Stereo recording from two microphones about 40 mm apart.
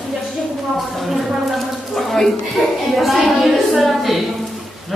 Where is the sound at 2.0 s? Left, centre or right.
Centre.